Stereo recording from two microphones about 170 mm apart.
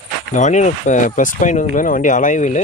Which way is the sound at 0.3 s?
45° left (ahead or behind).